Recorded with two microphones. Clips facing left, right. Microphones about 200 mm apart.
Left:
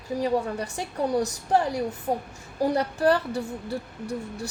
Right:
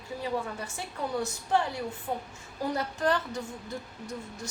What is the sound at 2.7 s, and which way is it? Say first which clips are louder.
A woman's voice: left 5 dB; 35° left (ahead or behind).